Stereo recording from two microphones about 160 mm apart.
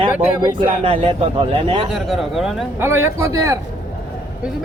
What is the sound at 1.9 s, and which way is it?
Speech, centre (ahead or behind).